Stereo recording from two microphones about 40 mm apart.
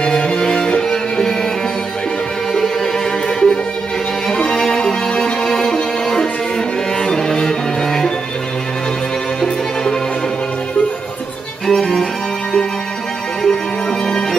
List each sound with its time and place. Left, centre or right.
0.0 s music: left
2.5 s music: centre
11.6 s music: centre
13.5 s music: centre